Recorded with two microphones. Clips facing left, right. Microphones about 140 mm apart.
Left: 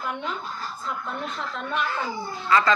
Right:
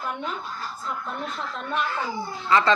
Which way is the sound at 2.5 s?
25° right (ahead or behind).